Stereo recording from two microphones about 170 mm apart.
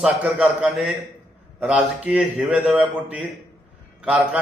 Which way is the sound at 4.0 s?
5° right (ahead or behind).